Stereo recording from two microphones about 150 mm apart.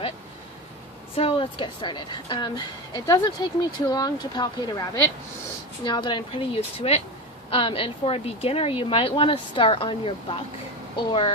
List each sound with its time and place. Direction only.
1.1 s a woman's voice: 40° left (ahead or behind)